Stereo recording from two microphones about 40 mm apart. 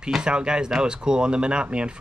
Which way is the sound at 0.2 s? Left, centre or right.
Right.